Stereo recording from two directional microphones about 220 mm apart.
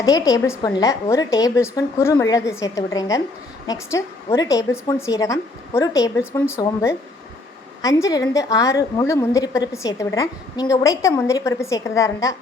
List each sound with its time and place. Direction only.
0.0 s a woman's voice: 15° left (ahead or behind)